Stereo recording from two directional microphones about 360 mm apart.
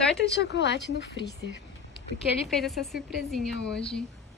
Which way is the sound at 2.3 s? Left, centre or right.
Centre.